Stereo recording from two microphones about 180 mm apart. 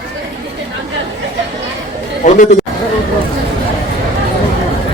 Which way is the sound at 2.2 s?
45° left (ahead or behind).